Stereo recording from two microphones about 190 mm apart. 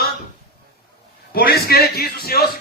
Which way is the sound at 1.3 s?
55° left (ahead or behind).